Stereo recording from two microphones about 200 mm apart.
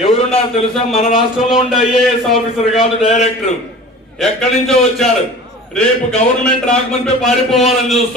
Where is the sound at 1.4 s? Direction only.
Centre (ahead or behind).